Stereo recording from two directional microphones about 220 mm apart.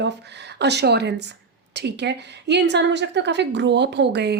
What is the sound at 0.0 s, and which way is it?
A woman's voice, 50° right (ahead or behind).